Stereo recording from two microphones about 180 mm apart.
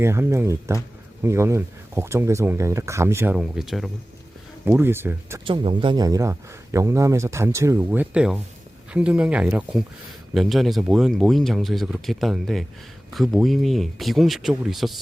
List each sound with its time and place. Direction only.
0.0 s speech: 15° right (ahead or behind)
3.3 s speech: centre (ahead or behind)
4.6 s speech: 10° right (ahead or behind)
5.5 s speech: 30° right (ahead or behind); by 14.9 s centre (ahead or behind)